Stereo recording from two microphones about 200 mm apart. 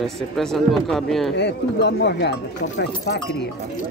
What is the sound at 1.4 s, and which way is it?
Speech, 55° left (ahead or behind).